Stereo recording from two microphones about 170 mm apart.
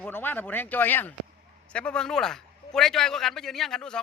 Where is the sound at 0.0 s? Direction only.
10° left (ahead or behind).